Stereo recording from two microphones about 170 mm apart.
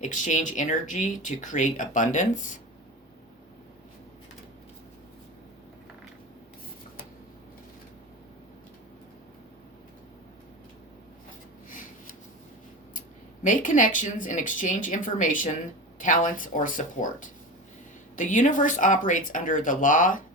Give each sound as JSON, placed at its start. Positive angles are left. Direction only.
{"t": 0.0, "sound": "speech", "side_deg": 45}
{"t": 13.4, "sound": "speech", "side_deg": 50}